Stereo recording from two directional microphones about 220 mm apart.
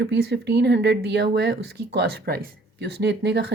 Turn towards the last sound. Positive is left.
turn(degrees=-50)  # may be behind; listen again after turning